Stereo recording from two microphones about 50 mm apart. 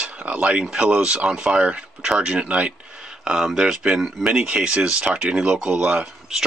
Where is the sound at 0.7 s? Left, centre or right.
Right.